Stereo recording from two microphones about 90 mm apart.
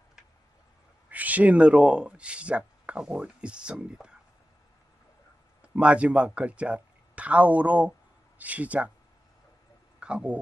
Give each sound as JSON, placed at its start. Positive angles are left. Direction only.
{"t": 1.1, "sound": "speech", "side_deg": -15}
{"t": 5.6, "sound": "speech", "side_deg": -15}
{"t": 9.9, "sound": "speech", "side_deg": -10}